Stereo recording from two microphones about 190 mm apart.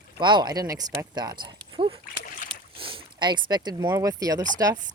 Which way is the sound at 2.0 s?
45° left (ahead or behind).